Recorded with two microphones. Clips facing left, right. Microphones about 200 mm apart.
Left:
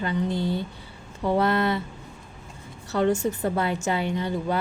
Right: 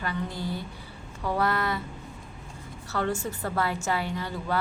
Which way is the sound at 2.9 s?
20° left (ahead or behind).